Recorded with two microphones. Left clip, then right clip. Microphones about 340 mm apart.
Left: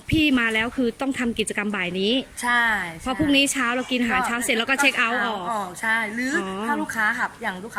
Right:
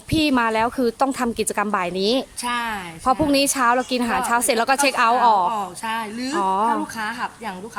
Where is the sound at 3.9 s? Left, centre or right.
Centre.